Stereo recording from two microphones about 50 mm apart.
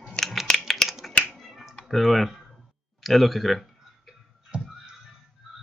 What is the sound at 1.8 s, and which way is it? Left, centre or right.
Speech, centre.